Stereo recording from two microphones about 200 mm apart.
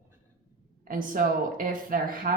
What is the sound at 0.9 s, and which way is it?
Speech, 45° right (ahead or behind).